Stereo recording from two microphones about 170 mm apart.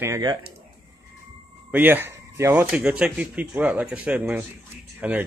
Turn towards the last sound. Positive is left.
turn(degrees=-5)  # may be behind; listen again after turning